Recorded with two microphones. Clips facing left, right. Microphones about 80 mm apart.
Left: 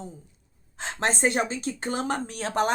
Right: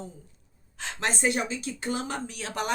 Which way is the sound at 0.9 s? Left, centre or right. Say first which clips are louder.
Left 3 dB; left.